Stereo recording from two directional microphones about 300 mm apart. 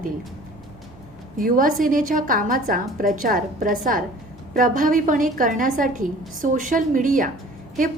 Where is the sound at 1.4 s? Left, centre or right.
Right.